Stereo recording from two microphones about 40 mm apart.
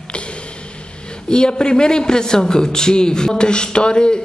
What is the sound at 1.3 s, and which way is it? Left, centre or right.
A man's voice, left.